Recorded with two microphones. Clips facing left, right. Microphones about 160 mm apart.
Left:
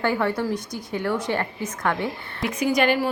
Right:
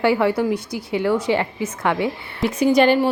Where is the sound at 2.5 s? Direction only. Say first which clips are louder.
Right 6 dB; 30° right (ahead or behind).